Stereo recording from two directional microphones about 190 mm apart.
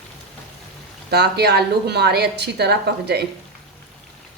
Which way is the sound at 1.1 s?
60° right (ahead or behind).